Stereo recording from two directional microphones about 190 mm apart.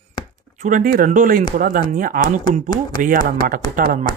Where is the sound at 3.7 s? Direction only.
45° right (ahead or behind).